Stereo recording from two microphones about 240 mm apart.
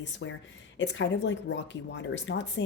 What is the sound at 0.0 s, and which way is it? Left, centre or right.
Speech, left.